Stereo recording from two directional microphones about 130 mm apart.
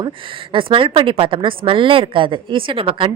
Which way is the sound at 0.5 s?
45° right (ahead or behind).